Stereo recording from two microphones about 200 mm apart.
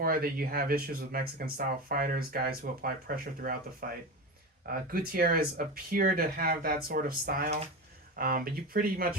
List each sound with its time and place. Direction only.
0.0 s speech: 50° right (ahead or behind)